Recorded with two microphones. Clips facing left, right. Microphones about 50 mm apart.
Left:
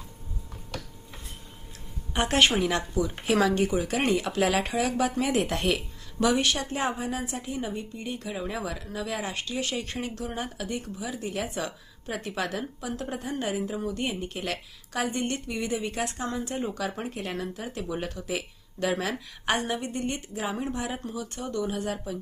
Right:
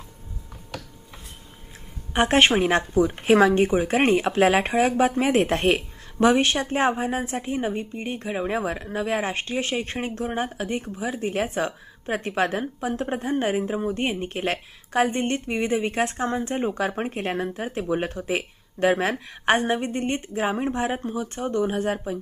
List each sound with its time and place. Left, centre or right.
2.1 s speech: right